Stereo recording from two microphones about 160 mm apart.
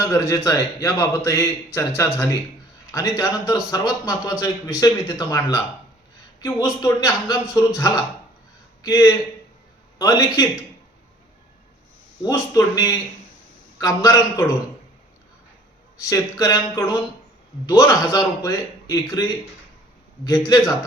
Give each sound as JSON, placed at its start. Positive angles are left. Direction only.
{"t": 0.1, "sound": "a man's voice", "side_deg": 20}
{"t": 6.8, "sound": "a man's voice", "side_deg": 20}
{"t": 12.2, "sound": "a man's voice", "side_deg": 20}
{"t": 16.0, "sound": "a man's voice", "side_deg": 20}
{"t": 20.2, "sound": "a man's voice", "side_deg": 20}